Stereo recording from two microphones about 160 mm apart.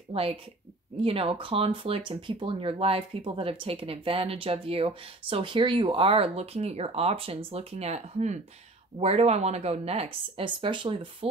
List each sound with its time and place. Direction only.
0.1 s speech: 35° right (ahead or behind)